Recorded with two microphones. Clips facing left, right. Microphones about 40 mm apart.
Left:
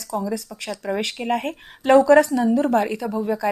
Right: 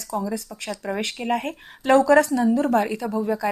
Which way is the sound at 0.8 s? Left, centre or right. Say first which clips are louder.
Left 3 dB; centre.